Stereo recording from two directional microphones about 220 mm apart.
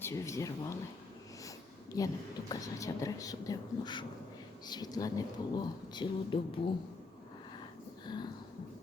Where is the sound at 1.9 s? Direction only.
15° left (ahead or behind).